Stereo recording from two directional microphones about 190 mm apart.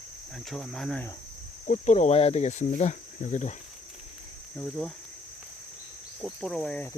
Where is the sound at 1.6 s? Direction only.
40° left (ahead or behind).